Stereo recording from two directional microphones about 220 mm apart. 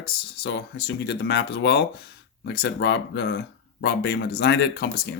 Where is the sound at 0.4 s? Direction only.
50° left (ahead or behind).